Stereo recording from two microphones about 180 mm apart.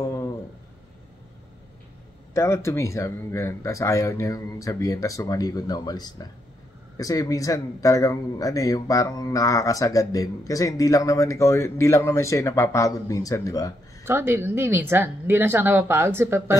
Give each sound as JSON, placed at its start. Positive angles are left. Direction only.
{"t": 2.3, "sound": "speech", "side_deg": 15}
{"t": 14.0, "sound": "a woman's voice", "side_deg": -15}